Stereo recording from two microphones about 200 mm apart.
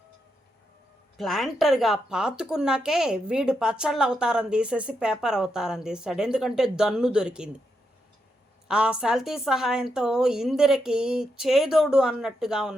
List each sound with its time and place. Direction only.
1.1 s speech: centre (ahead or behind)
8.6 s speech: 5° right (ahead or behind)